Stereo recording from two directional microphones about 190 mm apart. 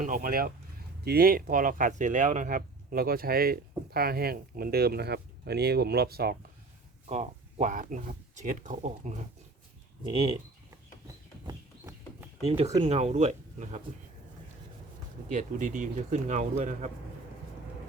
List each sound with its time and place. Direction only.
0.0 s speech: 45° right (ahead or behind)
7.1 s speech: 35° right (ahead or behind)
11.4 s a sound: 15° right (ahead or behind)
12.5 s speech: 35° right (ahead or behind)
15.3 s speech: 40° right (ahead or behind)